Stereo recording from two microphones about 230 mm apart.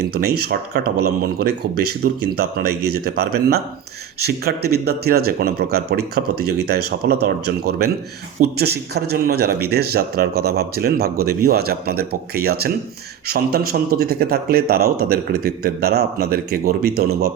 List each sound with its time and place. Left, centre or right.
0.0 s speech: right